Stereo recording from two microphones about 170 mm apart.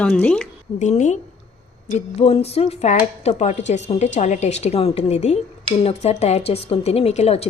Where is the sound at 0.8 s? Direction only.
45° left (ahead or behind).